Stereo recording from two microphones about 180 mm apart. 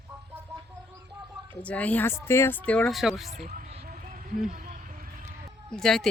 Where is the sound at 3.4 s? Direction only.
40° right (ahead or behind).